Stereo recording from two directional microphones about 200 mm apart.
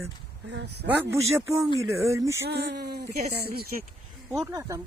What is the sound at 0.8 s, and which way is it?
Speech, 10° right (ahead or behind).